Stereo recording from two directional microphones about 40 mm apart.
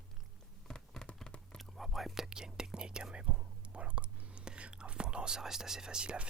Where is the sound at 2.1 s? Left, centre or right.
Centre.